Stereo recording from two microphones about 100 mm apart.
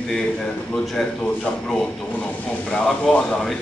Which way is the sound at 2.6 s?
10° left (ahead or behind).